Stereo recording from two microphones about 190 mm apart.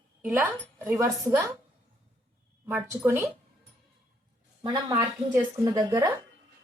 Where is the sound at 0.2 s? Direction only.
10° right (ahead or behind).